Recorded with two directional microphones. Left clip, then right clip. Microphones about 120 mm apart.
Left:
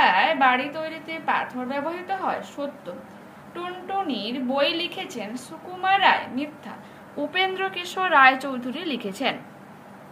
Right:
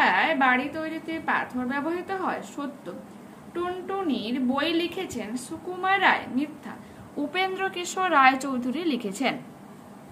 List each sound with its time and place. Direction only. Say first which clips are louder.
0.0 s a woman's voice: left 3 dB; 30° right (ahead or behind)